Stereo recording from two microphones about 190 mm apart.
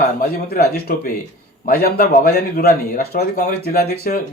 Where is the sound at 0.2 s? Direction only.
50° left (ahead or behind).